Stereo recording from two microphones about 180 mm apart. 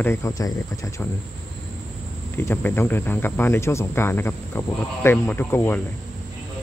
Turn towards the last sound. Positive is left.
turn(degrees=10)  # may be behind; listen again after turning